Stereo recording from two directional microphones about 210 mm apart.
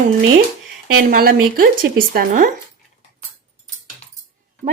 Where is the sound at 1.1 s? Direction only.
45° right (ahead or behind).